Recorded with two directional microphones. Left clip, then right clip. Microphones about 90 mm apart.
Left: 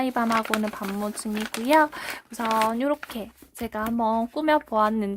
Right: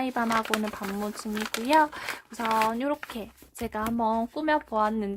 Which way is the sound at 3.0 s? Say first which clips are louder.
Left 2 dB; 25° left (ahead or behind).